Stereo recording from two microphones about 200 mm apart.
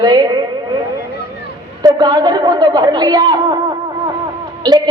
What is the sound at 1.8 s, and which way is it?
A woman's voice, 20° right (ahead or behind).